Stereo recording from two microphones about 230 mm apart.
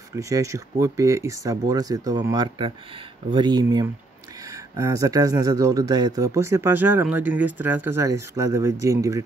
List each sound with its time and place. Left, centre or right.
0.1 s speech: centre